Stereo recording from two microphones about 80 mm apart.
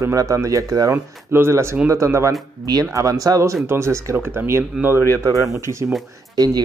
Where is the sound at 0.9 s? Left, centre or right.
Right.